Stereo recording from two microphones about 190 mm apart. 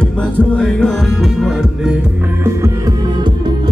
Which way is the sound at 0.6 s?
5° left (ahead or behind).